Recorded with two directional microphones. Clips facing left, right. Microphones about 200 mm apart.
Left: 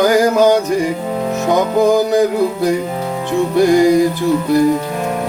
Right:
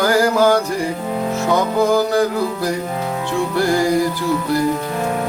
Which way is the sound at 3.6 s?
20° left (ahead or behind).